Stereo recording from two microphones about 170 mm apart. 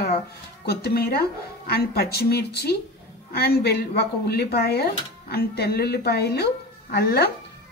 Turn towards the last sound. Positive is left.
turn(degrees=70)  # may be behind; listen again after turning